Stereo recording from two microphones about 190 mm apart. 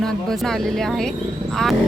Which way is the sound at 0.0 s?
Centre (ahead or behind).